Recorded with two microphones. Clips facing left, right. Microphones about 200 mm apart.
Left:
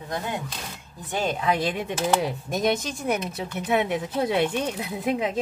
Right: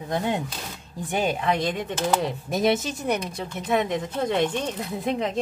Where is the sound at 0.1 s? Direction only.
25° right (ahead or behind).